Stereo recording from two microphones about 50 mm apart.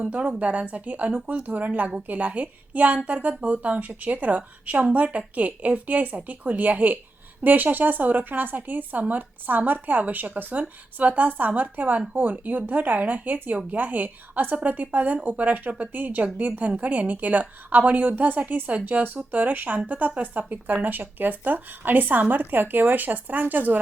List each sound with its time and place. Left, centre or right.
0.0 s a woman's voice: right